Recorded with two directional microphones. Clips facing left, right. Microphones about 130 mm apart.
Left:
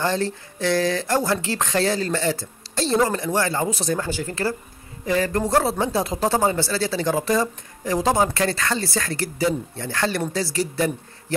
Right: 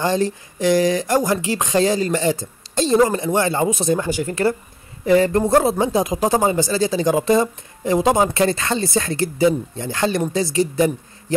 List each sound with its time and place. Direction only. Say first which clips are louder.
0.0 s speech: right 4 dB; 15° right (ahead or behind)